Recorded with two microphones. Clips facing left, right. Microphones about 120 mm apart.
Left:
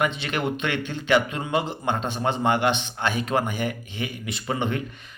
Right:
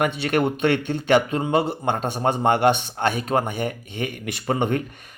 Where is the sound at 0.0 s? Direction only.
45° right (ahead or behind).